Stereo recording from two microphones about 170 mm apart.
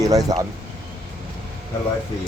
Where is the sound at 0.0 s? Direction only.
20° right (ahead or behind).